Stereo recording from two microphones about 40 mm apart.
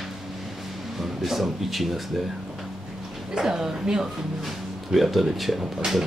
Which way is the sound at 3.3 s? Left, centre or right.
Centre.